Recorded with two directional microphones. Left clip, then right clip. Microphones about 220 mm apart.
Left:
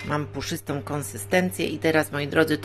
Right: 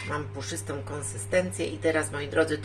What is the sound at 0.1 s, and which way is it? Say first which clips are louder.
Speech: left 7 dB; 45° left (ahead or behind).